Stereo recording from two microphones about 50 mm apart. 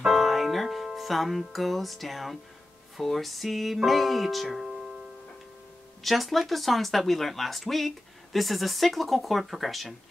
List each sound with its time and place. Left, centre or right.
0.0 s music: centre
3.0 s speech: centre
6.0 s speech: centre